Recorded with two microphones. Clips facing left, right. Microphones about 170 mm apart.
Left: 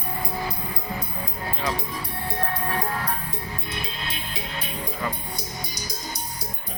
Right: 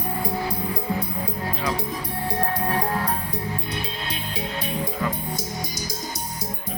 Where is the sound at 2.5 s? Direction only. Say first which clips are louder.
Right 3 dB; 40° right (ahead or behind).